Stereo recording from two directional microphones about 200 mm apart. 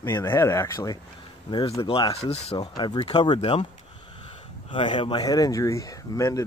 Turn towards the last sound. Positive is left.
turn(degrees=15)  # may be behind; listen again after turning